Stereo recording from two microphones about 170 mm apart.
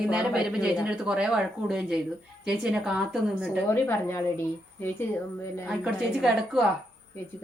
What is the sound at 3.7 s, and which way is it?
Speech, 15° left (ahead or behind).